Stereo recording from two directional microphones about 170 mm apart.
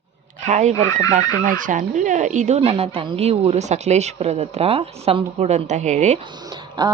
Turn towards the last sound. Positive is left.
turn(degrees=-25)  # may be behind; listen again after turning